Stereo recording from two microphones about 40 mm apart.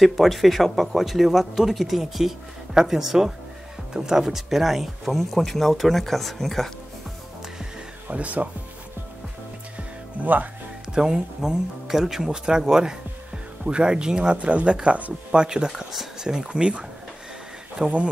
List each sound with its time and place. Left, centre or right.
0.0 s speech: centre
8.1 s speech: right
10.2 s speech: right
11.0 s speech: centre; by 15.1 s right
15.3 s speech: centre
17.8 s speech: right